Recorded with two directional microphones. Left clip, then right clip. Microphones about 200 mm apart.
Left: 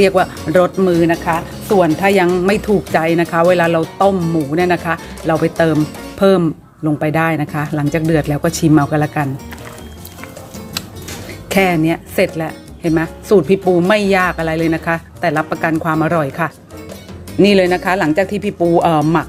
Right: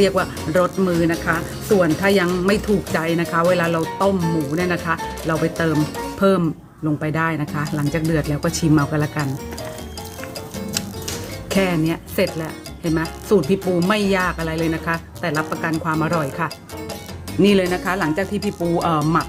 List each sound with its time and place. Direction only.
0.0 s speech: 20° left (ahead or behind)
11.4 s speech: 25° left (ahead or behind)